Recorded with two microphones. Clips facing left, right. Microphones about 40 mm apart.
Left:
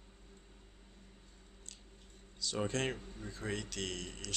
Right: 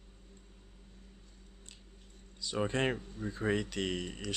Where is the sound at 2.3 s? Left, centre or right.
Centre.